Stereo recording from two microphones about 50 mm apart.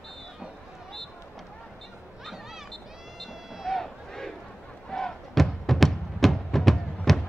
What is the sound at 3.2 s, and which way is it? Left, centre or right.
Cat, centre.